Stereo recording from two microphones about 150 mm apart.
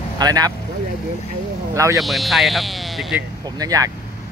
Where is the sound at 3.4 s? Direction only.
25° right (ahead or behind).